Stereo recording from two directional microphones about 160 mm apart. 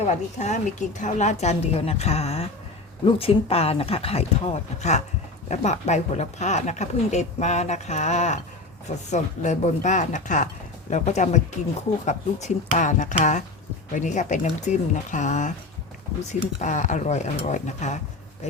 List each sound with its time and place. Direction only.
0.0 s speech: 45° left (ahead or behind)